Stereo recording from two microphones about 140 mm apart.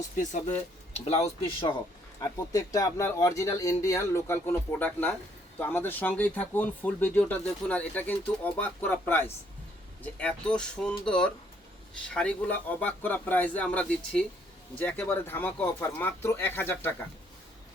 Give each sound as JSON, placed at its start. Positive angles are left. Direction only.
{"t": 0.2, "sound": "speech", "side_deg": 60}
{"t": 0.9, "sound": "speech", "side_deg": 50}
{"t": 2.2, "sound": "speech", "side_deg": 25}